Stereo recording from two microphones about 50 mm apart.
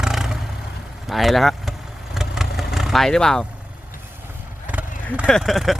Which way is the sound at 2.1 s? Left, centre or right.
Centre.